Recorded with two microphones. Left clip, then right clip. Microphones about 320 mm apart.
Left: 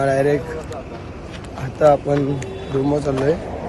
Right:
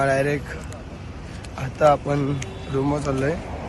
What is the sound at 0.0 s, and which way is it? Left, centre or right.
Speech, centre.